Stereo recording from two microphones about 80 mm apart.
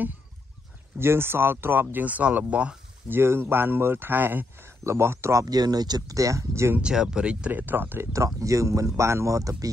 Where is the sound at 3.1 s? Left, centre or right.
Right.